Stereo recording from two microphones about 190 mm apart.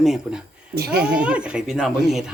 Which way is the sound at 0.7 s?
55° right (ahead or behind).